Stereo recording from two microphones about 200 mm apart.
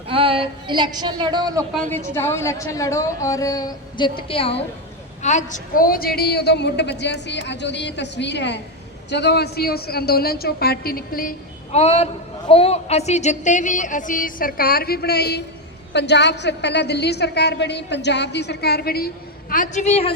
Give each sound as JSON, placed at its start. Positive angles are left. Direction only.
{"t": 0.1, "sound": "speech", "side_deg": -25}
{"t": 1.9, "sound": "a woman's voice", "side_deg": 10}
{"t": 11.7, "sound": "a woman's voice", "side_deg": 30}